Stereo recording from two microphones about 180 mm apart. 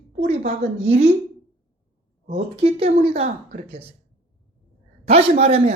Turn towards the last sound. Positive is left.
turn(degrees=-35)  # may be behind; listen again after turning